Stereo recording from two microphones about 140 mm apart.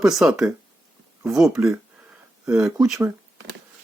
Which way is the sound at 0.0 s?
5° right (ahead or behind).